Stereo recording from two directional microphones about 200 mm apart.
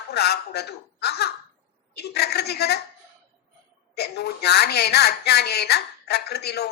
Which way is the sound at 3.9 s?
55° left (ahead or behind).